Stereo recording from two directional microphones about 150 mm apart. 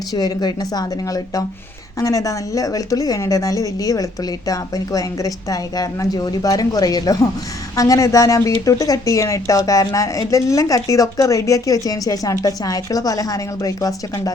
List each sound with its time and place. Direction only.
0.1 s speech: 25° left (ahead or behind)